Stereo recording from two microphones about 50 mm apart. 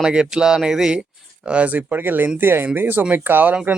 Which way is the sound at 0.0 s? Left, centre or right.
Centre.